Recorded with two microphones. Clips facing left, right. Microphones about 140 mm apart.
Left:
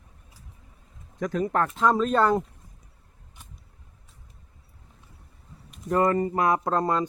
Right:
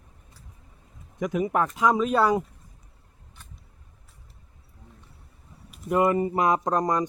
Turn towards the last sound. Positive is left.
turn(degrees=-15)  # may be behind; listen again after turning